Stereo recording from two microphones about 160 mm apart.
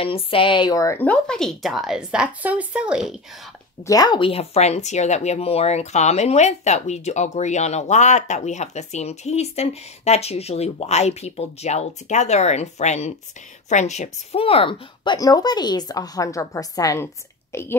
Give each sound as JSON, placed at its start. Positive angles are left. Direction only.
{"t": 0.0, "sound": "speech", "side_deg": 35}
{"t": 3.8, "sound": "a woman's voice", "side_deg": 25}